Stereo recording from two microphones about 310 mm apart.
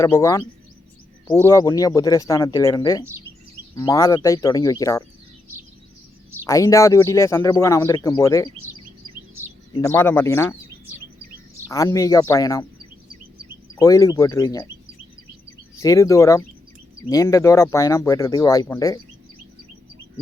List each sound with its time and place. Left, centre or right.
0.0 s speech: centre
6.4 s speech: centre
8.7 s chirp: right
9.7 s speech: centre
11.7 s speech: centre
13.7 s speech: centre
15.8 s speech: centre